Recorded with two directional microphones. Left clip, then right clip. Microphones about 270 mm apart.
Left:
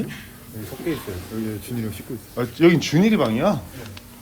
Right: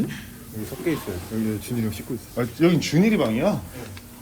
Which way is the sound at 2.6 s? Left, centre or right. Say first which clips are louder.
Left 4 dB; centre.